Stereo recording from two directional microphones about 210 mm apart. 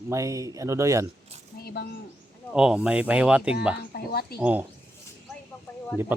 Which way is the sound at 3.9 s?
50° left (ahead or behind).